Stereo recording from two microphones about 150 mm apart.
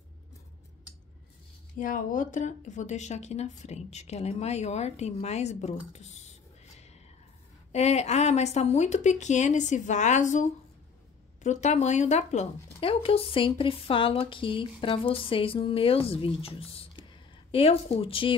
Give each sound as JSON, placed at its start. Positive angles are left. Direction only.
{"t": 1.8, "sound": "speech", "side_deg": 65}